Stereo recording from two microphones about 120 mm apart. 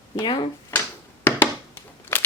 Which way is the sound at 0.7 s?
15° left (ahead or behind).